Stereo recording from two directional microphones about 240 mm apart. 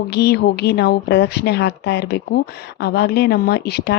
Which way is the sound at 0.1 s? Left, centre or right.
Left.